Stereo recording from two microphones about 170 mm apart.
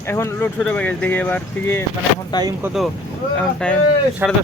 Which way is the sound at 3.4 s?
5° left (ahead or behind).